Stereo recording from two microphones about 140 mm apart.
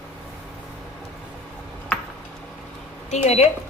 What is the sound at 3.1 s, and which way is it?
Speech, 50° left (ahead or behind).